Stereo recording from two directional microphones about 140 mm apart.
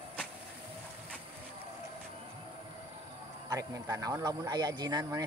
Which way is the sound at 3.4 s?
25° right (ahead or behind).